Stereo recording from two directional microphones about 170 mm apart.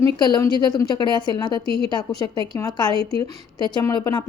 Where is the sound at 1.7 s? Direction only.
70° left (ahead or behind).